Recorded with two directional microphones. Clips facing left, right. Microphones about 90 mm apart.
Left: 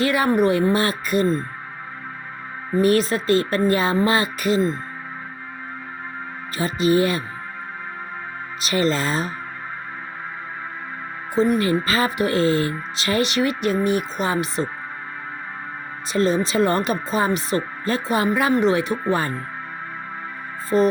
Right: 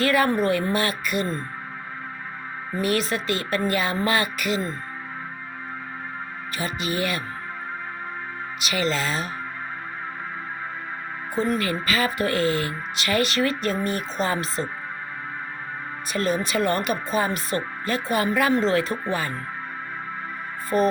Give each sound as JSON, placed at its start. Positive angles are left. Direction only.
{"t": 0.0, "sound": "speech", "side_deg": 20}
{"t": 2.8, "sound": "speech", "side_deg": 35}
{"t": 6.6, "sound": "speech", "side_deg": 35}
{"t": 8.6, "sound": "speech", "side_deg": 40}
{"t": 11.6, "sound": "speech", "side_deg": 30}
{"t": 16.0, "sound": "speech", "side_deg": 25}
{"t": 18.6, "sound": "speech", "side_deg": 20}
{"t": 19.0, "sound": "speech", "side_deg": 35}
{"t": 20.7, "sound": "music", "side_deg": 15}